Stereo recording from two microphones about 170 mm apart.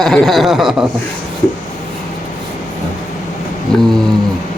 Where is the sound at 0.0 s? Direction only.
Centre (ahead or behind).